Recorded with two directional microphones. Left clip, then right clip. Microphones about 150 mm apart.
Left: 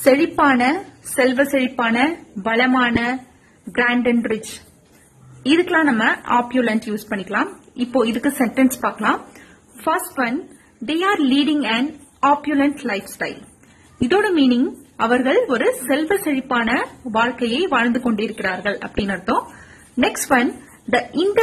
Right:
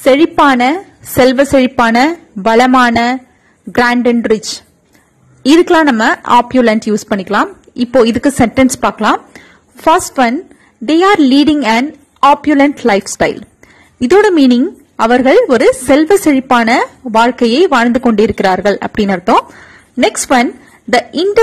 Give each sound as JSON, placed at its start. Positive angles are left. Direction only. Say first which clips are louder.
{"t": 0.0, "sound": "a woman's voice", "louder": "right 7 dB", "side_deg": -30}
{"t": 5.4, "sound": "a woman's voice", "louder": "right 9 dB", "side_deg": -40}